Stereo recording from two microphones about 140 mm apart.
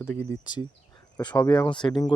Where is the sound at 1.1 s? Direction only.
30° left (ahead or behind).